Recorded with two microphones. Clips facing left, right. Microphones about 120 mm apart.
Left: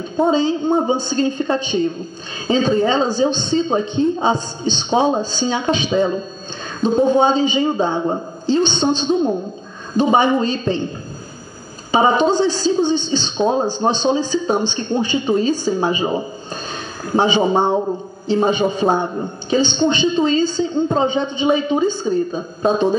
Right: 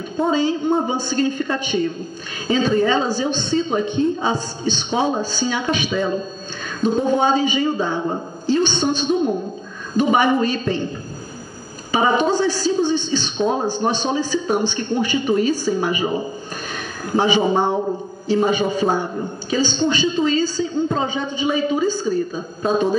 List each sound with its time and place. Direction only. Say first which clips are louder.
0.2 s a woman's voice: left 3 dB; 25° left (ahead or behind)
11.9 s a woman's voice: left 3 dB; 25° left (ahead or behind)